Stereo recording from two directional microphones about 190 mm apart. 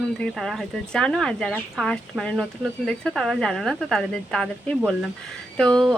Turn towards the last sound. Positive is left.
turn(degrees=5)  # may be behind; listen again after turning